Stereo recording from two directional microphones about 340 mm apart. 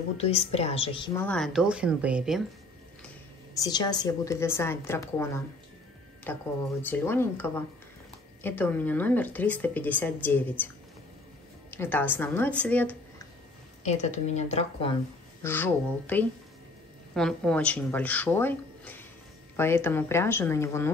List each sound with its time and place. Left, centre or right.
0.2 s speech: centre
3.5 s a woman's voice: centre
11.7 s speech: centre
13.8 s a woman's voice: centre
15.4 s a woman's voice: centre